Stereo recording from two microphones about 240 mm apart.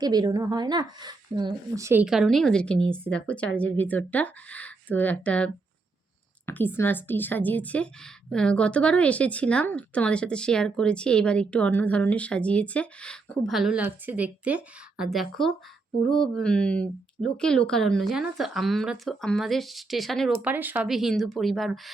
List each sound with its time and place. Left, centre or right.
0.0 s a woman's voice: centre